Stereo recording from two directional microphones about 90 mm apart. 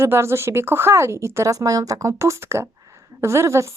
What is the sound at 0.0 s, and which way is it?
Speech, 30° right (ahead or behind).